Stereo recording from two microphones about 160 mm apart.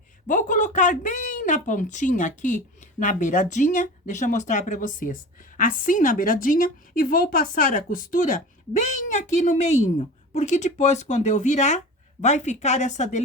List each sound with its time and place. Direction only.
0.3 s a woman's voice: 50° left (ahead or behind)